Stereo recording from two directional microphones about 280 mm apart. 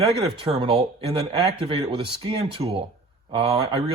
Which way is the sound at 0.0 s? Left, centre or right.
Right.